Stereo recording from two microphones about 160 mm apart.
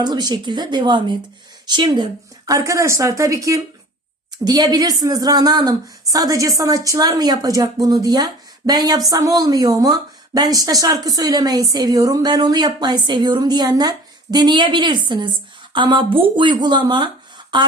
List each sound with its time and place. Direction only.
0.0 s a woman's voice: 25° right (ahead or behind)